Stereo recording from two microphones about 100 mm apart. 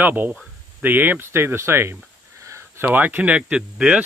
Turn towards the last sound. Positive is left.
turn(degrees=-10)  # may be behind; listen again after turning